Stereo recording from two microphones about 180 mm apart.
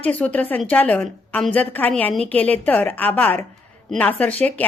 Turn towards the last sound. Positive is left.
turn(degrees=10)  # may be behind; listen again after turning